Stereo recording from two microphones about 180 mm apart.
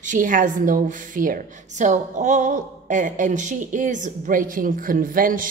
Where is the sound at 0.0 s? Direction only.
45° right (ahead or behind).